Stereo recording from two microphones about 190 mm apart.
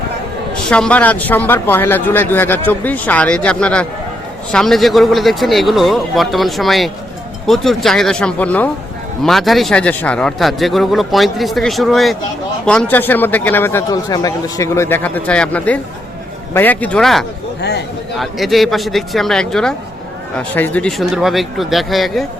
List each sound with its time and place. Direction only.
0.5 s a man's voice: 5° left (ahead or behind)
17.6 s a man's voice: 60° left (ahead or behind)
18.2 s a man's voice: centre (ahead or behind)